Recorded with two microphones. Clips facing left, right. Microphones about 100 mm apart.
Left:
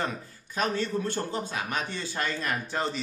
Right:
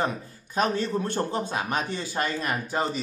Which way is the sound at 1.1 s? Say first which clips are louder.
Right 4 dB; 20° right (ahead or behind).